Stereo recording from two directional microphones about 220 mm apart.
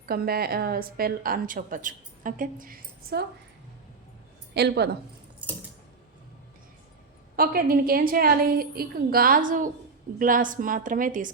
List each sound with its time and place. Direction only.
0.0 s a woman's voice: 45° right (ahead or behind)
4.5 s a woman's voice: 50° right (ahead or behind)
7.3 s a woman's voice: 40° right (ahead or behind)